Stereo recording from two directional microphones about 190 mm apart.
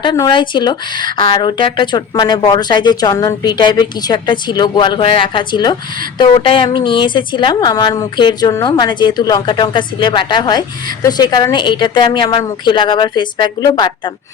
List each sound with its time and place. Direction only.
0.0 s speech: 25° left (ahead or behind)